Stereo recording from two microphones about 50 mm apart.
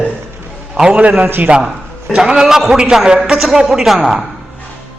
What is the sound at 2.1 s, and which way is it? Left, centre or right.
A man's voice, centre.